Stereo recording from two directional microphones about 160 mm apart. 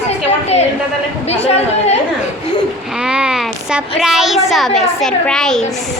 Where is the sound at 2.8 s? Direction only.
5° right (ahead or behind).